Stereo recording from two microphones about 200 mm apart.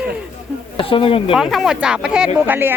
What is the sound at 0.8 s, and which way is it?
Speech, 25° left (ahead or behind).